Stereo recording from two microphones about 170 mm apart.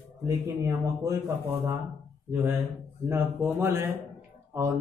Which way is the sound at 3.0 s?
15° right (ahead or behind).